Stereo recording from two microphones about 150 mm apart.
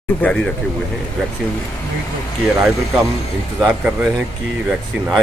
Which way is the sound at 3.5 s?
10° right (ahead or behind).